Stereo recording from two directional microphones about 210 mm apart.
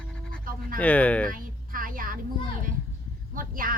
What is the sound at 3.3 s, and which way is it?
Speech, 40° right (ahead or behind).